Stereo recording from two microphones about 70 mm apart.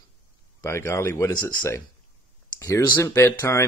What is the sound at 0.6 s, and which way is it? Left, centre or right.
Speech, left.